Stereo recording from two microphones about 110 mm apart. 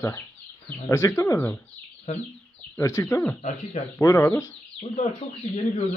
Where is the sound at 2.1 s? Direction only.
85° left.